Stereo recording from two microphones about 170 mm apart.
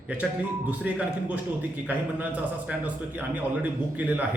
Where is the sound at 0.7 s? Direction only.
10° right (ahead or behind).